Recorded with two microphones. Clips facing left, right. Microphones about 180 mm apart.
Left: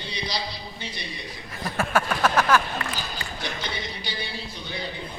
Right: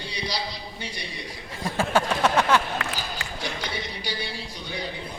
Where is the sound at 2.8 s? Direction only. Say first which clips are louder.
Right 1 dB; 90° right.